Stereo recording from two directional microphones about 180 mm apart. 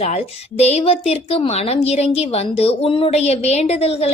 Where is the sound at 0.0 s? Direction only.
35° left (ahead or behind).